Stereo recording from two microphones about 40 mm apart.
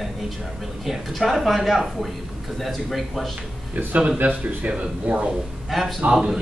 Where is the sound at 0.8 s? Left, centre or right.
Centre.